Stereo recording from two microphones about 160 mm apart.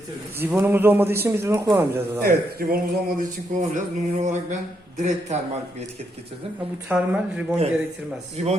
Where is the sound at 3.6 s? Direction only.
50° right (ahead or behind).